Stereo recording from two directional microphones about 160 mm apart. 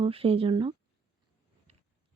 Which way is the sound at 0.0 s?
35° right (ahead or behind).